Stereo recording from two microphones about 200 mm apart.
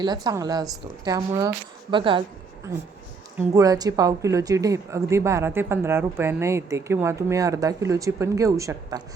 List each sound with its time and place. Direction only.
0.0 s speech: 20° right (ahead or behind)
3.3 s a woman's voice: 15° right (ahead or behind)